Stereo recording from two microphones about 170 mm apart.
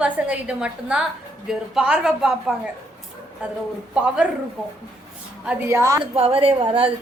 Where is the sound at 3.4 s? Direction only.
5° right (ahead or behind).